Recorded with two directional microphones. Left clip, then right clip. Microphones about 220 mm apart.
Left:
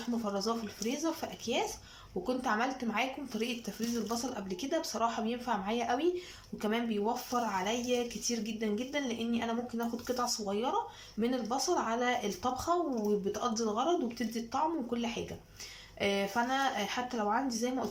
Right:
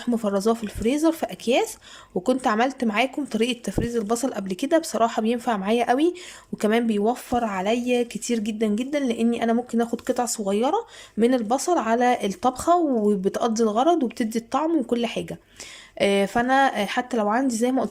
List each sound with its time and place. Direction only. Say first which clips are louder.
0.3 s speech: right 12 dB; 50° right (ahead or behind)